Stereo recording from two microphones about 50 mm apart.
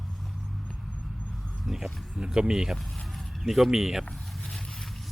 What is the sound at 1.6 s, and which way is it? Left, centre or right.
Speech, centre.